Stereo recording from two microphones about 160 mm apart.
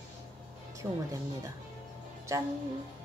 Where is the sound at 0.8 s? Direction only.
10° right (ahead or behind).